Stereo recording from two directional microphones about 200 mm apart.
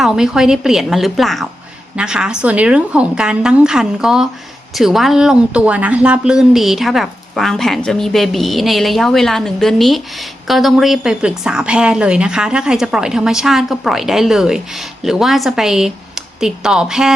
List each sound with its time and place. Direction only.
0.0 s speech: centre (ahead or behind)